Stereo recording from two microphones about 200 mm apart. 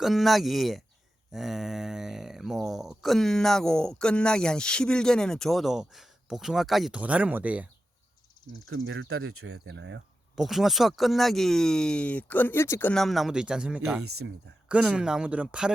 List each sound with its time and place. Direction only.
0.0 s speech: centre (ahead or behind)
8.7 s speech: 80° right; by 10.0 s 65° right (ahead or behind)
10.3 s speech: centre (ahead or behind)
14.0 s speech: 90° right
14.7 s speech: 5° right (ahead or behind)